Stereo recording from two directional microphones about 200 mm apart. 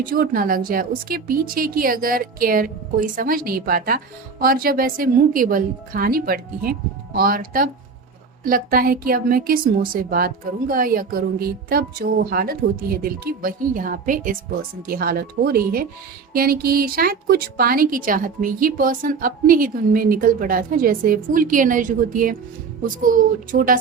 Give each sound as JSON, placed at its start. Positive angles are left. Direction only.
{"t": 0.0, "sound": "a woman's voice", "side_deg": -45}